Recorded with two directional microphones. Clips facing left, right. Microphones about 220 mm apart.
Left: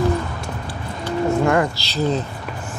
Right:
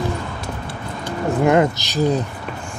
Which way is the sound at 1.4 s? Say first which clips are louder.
Right 3 dB; 20° right (ahead or behind).